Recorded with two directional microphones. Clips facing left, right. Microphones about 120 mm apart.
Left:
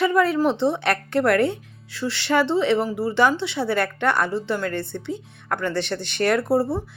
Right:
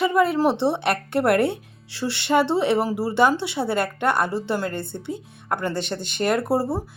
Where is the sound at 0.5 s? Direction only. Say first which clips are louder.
Even; 65° right (ahead or behind).